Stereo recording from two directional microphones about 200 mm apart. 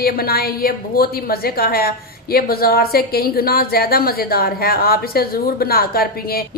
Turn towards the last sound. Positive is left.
turn(degrees=50)  # may be behind; listen again after turning